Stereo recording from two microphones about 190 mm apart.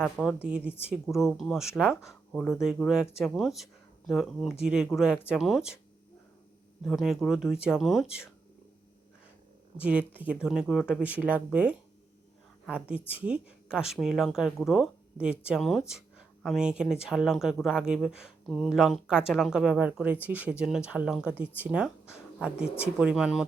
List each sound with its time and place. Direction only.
0.0 s speech: centre (ahead or behind)
6.8 s speech: centre (ahead or behind)
9.7 s speech: 5° right (ahead or behind)